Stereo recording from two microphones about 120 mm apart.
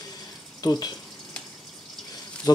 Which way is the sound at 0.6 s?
30° left (ahead or behind).